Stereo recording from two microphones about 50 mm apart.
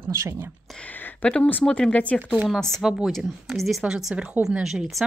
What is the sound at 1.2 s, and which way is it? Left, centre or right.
Speech, left.